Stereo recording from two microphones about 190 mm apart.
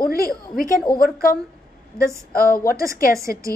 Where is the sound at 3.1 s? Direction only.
15° right (ahead or behind).